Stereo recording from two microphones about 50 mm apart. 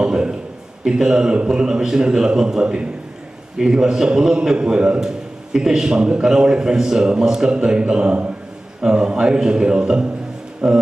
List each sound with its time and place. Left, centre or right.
0.0 s a man's voice: centre